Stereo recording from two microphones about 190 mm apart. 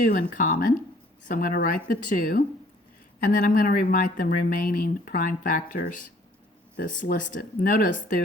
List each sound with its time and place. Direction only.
0.0 s speech: 50° left (ahead or behind)